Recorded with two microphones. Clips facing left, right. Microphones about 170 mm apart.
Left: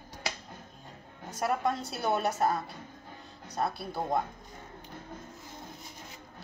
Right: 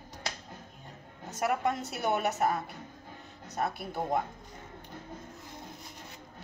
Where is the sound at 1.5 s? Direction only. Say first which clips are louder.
Left 2 dB; 20° right (ahead or behind).